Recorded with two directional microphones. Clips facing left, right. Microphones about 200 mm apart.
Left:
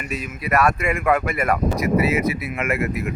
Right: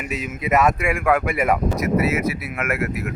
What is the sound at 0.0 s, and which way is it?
Speech, 15° right (ahead or behind).